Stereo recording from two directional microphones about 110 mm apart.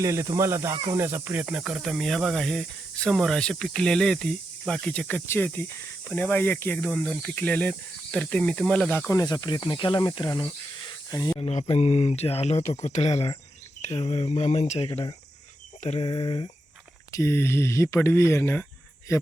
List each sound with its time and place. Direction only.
0.0 s speech: 25° right (ahead or behind); by 8.9 s 5° left (ahead or behind)
8.9 s speech: 20° left (ahead or behind)
9.1 s speech: 40° left (ahead or behind)
11.1 s speech: 35° left (ahead or behind)
11.3 s speech: 70° left (ahead or behind)
16.0 s speech: 45° left (ahead or behind)
17.1 s speech: 25° left (ahead or behind)